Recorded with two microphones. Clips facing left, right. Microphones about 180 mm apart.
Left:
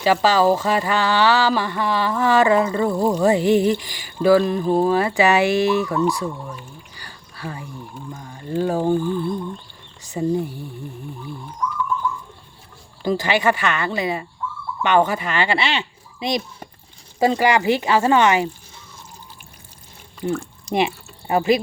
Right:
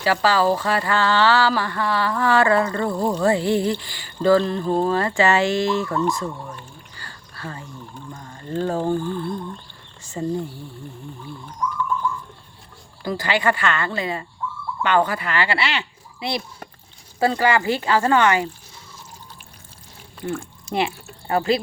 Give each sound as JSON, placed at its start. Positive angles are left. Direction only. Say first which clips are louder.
{"t": 0.0, "sound": "speech", "louder": "left 3 dB", "side_deg": 20}
{"t": 6.5, "sound": "a sound", "louder": "left 2 dB", "side_deg": 10}
{"t": 8.1, "sound": "speech", "louder": "left 2 dB", "side_deg": 10}
{"t": 13.0, "sound": "speech", "louder": "left 3 dB", "side_deg": 20}
{"t": 20.7, "sound": "speech", "louder": "left 3 dB", "side_deg": 15}